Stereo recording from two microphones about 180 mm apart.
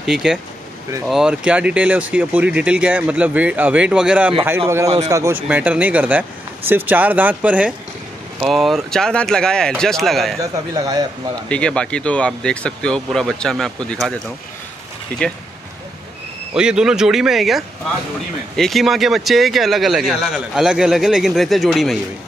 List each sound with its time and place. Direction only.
0.0 s speech: 5° right (ahead or behind)
4.6 s speech: 15° right (ahead or behind); by 10.3 s centre (ahead or behind)
10.5 s a man's voice: 20° right (ahead or behind)
11.4 s speech: 5° left (ahead or behind)
16.5 s speech: 5° right (ahead or behind)